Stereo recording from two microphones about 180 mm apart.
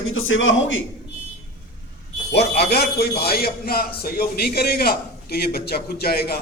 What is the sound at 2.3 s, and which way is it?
A man's voice, 65° left (ahead or behind).